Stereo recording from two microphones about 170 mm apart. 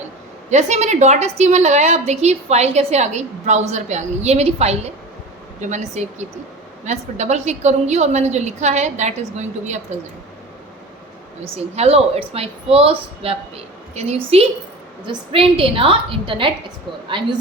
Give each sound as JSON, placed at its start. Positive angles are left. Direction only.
{"t": 0.5, "sound": "a woman's voice", "side_deg": -40}
{"t": 11.5, "sound": "a woman's voice", "side_deg": -35}